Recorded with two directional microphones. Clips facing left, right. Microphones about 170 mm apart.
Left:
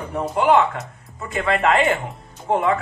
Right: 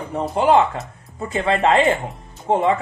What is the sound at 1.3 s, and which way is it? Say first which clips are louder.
Speech: right 2 dB; 25° right (ahead or behind).